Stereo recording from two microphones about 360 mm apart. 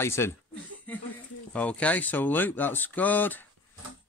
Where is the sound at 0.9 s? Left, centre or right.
Centre.